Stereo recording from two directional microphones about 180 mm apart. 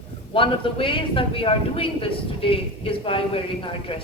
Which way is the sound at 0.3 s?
30° left (ahead or behind).